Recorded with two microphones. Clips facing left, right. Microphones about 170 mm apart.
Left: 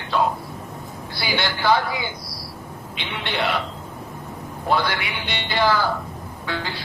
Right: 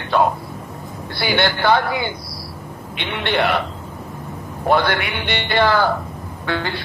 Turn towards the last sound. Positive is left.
turn(degrees=-60)  # may be behind; listen again after turning